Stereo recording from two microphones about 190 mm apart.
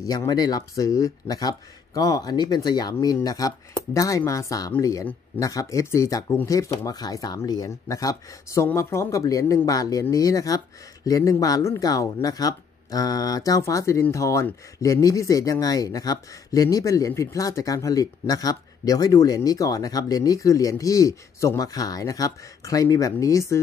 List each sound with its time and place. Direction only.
0.0 s speech: 20° left (ahead or behind)